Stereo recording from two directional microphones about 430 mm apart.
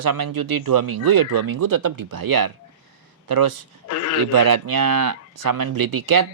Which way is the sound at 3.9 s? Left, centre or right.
Left.